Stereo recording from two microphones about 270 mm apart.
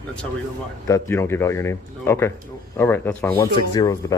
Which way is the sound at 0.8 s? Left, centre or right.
Centre.